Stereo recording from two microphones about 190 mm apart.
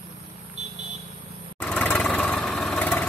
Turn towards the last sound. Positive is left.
turn(degrees=5)  # may be behind; listen again after turning